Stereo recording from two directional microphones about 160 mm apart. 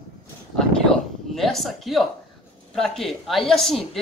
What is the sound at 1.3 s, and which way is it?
Speech, centre (ahead or behind).